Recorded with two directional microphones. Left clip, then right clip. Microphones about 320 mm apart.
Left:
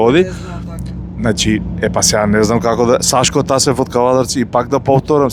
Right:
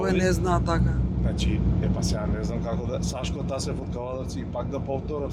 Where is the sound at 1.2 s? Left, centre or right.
Left.